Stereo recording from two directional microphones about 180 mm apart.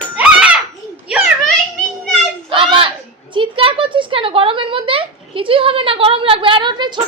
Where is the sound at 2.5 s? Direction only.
30° right (ahead or behind).